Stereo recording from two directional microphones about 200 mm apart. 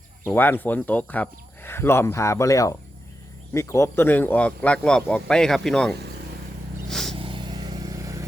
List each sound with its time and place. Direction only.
0.3 s speech: 10° left (ahead or behind)
6.8 s vehicle: centre (ahead or behind)
7.2 s vehicle: 25° right (ahead or behind)